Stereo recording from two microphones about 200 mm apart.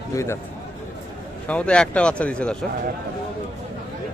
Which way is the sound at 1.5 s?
5° left (ahead or behind).